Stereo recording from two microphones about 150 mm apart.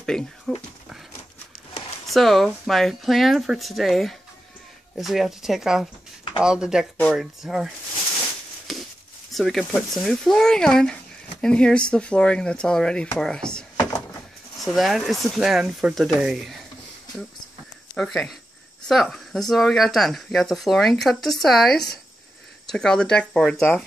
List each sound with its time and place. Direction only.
0.0 s speech: 5° left (ahead or behind)
2.0 s speech: centre (ahead or behind)
8.7 s a sound: centre (ahead or behind)
9.3 s speech: centre (ahead or behind)
17.9 s speech: centre (ahead or behind)